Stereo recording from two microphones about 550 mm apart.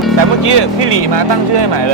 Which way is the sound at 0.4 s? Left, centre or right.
Right.